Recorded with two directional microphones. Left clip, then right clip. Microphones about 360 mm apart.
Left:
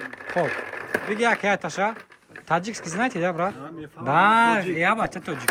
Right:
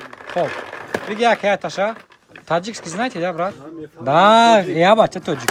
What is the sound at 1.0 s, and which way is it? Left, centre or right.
Speech, centre.